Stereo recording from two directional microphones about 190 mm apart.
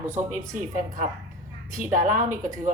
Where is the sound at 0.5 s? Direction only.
45° right (ahead or behind).